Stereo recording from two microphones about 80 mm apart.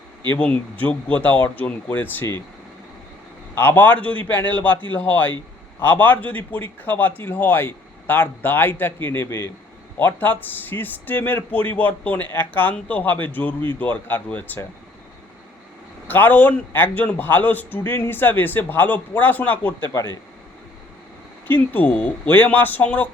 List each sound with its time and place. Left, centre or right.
0.3 s a man's voice: centre
3.5 s a man's voice: left
16.0 s a man's voice: left
21.4 s a man's voice: left